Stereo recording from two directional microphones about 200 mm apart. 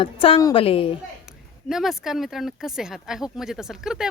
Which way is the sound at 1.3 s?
Centre (ahead or behind).